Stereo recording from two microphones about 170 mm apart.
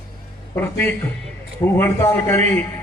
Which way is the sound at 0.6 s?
10° left (ahead or behind).